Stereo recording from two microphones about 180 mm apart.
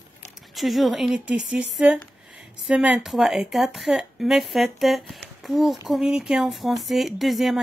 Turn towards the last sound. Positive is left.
turn(degrees=0)  # may be behind; listen again after turning